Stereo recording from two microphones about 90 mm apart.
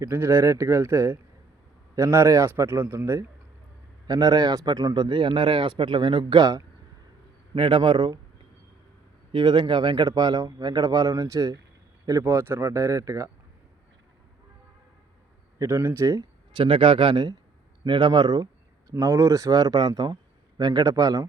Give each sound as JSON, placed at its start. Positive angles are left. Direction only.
{"t": 0.1, "sound": "a man's voice", "side_deg": -25}
{"t": 4.0, "sound": "speech", "side_deg": -45}
{"t": 5.0, "sound": "a man's voice", "side_deg": -65}
{"t": 7.5, "sound": "a man's voice", "side_deg": -70}
{"t": 9.3, "sound": "a man's voice", "side_deg": -55}
{"t": 10.1, "sound": "speech", "side_deg": -45}
{"t": 12.2, "sound": "speech", "side_deg": -25}
{"t": 15.5, "sound": "a man's voice", "side_deg": -25}
{"t": 16.6, "sound": "speech", "side_deg": -75}
{"t": 19.1, "sound": "speech", "side_deg": -35}